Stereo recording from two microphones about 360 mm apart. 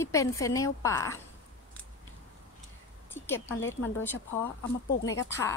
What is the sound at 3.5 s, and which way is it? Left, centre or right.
Speech, left.